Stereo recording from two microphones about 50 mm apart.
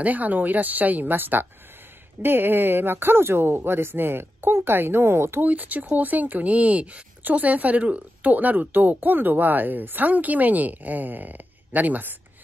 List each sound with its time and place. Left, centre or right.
0.0 s speech: right
5.4 s speech: right